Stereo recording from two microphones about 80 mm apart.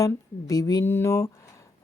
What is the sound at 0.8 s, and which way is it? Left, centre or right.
Speech, left.